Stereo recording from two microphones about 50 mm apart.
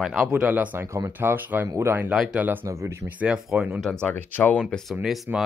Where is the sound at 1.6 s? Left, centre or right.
Right.